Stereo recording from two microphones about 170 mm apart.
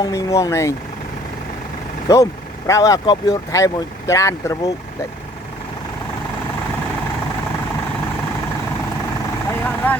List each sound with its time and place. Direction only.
0.0 s speech: 20° left (ahead or behind)
2.1 s speech: 20° left (ahead or behind)
9.6 s vehicle: 10° left (ahead or behind)